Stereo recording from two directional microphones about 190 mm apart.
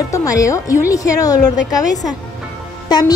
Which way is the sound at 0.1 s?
15° left (ahead or behind).